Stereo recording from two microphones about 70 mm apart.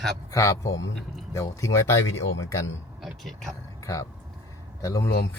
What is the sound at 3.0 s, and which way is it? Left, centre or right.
Speech, centre.